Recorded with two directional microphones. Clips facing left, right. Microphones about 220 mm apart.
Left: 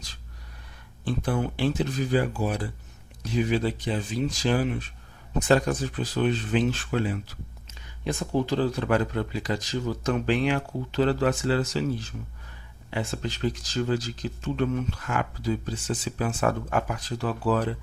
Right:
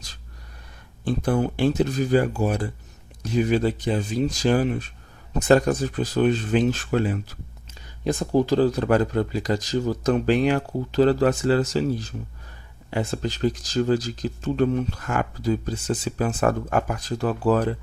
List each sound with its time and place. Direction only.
1.0 s speech: 45° right (ahead or behind)